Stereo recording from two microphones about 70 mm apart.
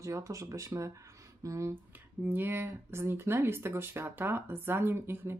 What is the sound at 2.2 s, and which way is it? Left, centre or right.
Speech, right.